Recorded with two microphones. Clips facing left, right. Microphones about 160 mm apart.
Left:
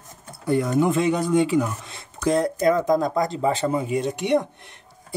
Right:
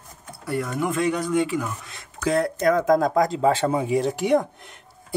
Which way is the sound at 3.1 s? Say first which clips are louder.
Right 3 dB; 90° right.